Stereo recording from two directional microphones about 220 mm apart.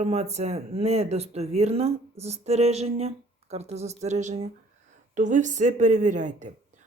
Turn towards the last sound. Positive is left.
turn(degrees=-35)  # may be behind; listen again after turning